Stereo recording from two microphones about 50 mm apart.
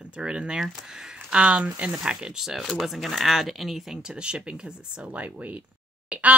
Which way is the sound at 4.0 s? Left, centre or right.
Centre.